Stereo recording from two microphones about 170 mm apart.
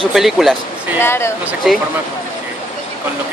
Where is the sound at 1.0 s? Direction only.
15° left (ahead or behind).